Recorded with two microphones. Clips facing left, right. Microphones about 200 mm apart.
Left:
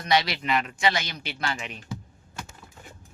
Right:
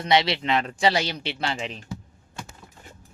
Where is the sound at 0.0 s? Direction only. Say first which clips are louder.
Right 3 dB; 25° right (ahead or behind).